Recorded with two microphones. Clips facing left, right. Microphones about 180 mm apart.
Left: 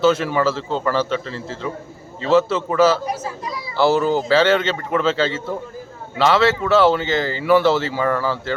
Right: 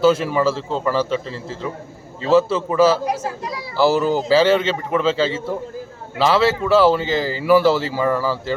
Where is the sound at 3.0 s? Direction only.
75° right (ahead or behind).